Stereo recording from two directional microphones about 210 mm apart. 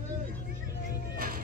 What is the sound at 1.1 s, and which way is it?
Music, 45° right (ahead or behind).